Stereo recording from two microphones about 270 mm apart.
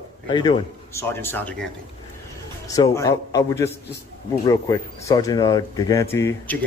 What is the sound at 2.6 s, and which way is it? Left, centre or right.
Speech, centre.